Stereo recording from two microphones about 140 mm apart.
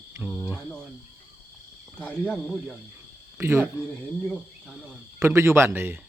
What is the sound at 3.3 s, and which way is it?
Speech, 15° right (ahead or behind).